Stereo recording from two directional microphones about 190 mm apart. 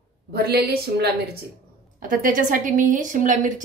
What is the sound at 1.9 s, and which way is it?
A woman's voice, 45° right (ahead or behind).